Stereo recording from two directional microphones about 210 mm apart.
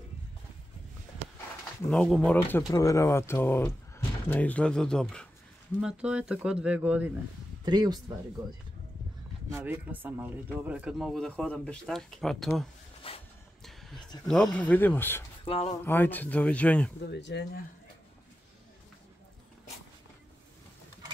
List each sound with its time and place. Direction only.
1.9 s speech: centre (ahead or behind)
7.6 s speech: 20° right (ahead or behind)
9.5 s speech: 10° right (ahead or behind)
13.0 s a sound: 25° left (ahead or behind)
14.2 s speech: centre (ahead or behind)
15.4 s speech: 25° left (ahead or behind)
15.8 s speech: 10° left (ahead or behind)
17.1 s speech: 55° left (ahead or behind)